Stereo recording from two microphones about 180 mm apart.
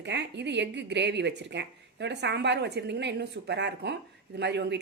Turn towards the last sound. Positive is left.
turn(degrees=-70)  # may be behind; listen again after turning